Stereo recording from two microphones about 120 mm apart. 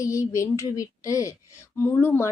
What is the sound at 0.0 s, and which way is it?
Speech, 25° left (ahead or behind).